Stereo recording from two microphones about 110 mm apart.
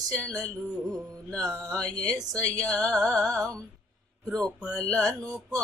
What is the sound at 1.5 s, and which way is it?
Speech, 30° right (ahead or behind).